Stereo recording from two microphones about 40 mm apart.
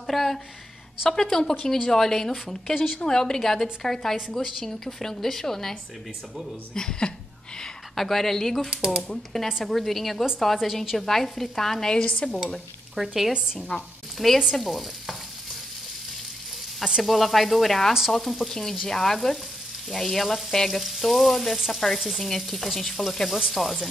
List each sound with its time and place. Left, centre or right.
0.0 s a sound: centre
1.1 s frying: centre
7.9 s frying: centre
11.9 s stir: left
12.9 s frying: centre
13.7 s stir: left
14.1 s frying: centre
14.6 s stir: centre
17.0 s frying: centre